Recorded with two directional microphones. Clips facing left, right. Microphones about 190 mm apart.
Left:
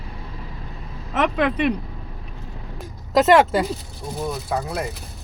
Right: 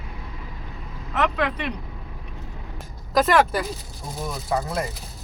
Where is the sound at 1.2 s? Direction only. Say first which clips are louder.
Left 4 dB; 20° left (ahead or behind).